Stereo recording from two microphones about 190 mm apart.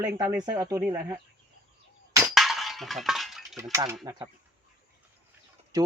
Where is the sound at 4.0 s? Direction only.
20° right (ahead or behind).